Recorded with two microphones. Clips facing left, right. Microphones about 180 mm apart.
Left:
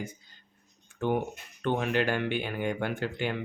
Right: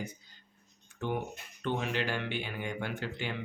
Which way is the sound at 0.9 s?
55° left (ahead or behind).